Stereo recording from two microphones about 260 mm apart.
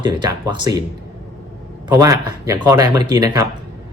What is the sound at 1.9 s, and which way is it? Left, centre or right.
Speech, centre.